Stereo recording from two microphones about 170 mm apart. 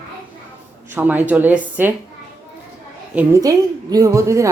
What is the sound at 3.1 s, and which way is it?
Speech, 20° right (ahead or behind).